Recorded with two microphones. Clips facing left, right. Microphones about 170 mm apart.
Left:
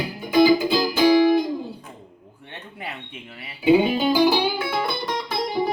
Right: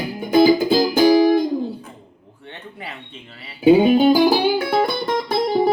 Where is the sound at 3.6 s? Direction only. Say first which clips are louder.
Right 5 dB; 45° right (ahead or behind).